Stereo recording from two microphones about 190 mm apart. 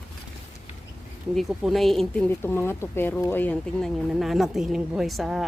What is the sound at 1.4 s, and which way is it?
Speech, centre (ahead or behind).